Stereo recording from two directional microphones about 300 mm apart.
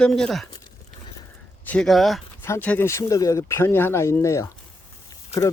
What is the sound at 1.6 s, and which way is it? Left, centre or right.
Speech, centre.